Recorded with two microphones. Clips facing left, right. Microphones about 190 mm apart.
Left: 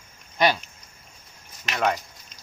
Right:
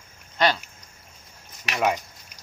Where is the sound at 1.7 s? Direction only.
10° right (ahead or behind).